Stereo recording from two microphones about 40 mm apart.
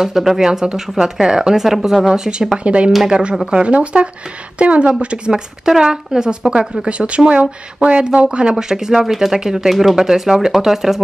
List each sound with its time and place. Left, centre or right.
0.0 s speech: centre
0.5 s speech: centre
2.6 s a woman's voice: right
5.7 s speech: centre
6.9 s speech: right; by 11.0 s centre